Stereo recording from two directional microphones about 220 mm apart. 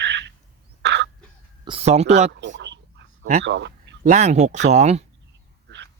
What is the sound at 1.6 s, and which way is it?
Speech, 25° right (ahead or behind).